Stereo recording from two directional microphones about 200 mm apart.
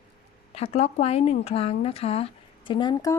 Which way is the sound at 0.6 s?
35° left (ahead or behind).